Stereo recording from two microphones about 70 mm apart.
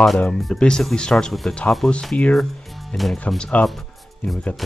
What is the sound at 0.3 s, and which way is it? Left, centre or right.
Speech, centre.